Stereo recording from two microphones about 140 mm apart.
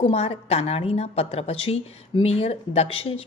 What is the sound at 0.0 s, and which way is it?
Speech, 45° left (ahead or behind).